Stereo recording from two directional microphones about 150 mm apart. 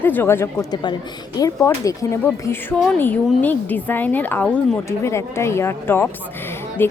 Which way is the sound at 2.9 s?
10° left (ahead or behind).